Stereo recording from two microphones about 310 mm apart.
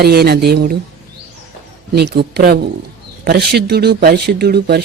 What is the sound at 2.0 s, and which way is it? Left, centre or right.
Speech, right.